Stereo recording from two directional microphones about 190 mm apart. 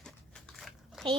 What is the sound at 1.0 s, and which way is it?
Speech, centre (ahead or behind).